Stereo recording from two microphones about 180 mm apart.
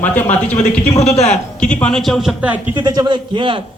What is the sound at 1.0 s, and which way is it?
Speech, 35° left (ahead or behind).